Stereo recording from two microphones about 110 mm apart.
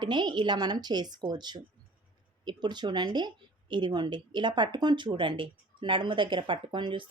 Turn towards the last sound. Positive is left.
turn(degrees=-50)  # may be behind; listen again after turning